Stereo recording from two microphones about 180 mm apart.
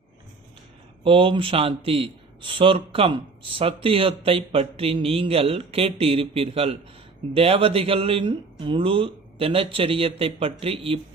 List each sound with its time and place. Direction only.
1.0 s a man's voice: 30° right (ahead or behind)